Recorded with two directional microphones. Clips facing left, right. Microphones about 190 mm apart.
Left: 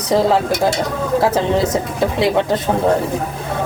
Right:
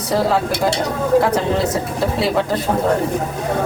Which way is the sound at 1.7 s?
20° left (ahead or behind).